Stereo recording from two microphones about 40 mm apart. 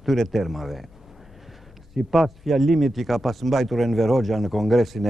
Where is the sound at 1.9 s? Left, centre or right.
Centre.